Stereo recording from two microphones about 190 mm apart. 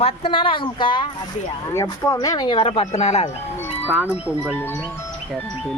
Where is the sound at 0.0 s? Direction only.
30° left (ahead or behind).